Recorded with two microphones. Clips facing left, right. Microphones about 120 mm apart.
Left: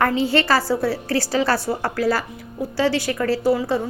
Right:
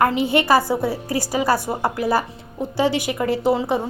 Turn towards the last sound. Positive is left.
turn(degrees=-20)  # may be behind; listen again after turning